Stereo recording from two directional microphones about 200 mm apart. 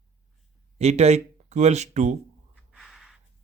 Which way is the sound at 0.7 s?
35° right (ahead or behind).